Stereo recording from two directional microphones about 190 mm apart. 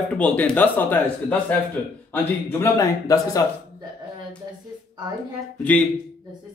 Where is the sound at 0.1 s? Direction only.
5° left (ahead or behind).